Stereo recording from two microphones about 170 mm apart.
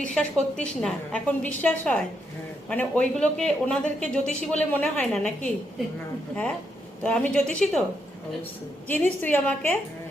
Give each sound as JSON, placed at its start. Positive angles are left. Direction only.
{"t": 0.1, "sound": "speech", "side_deg": 5}
{"t": 7.0, "sound": "speech", "side_deg": 5}
{"t": 8.9, "sound": "speech", "side_deg": 10}